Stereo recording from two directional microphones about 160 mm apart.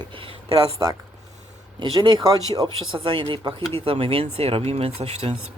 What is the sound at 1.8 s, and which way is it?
Speech, 30° right (ahead or behind).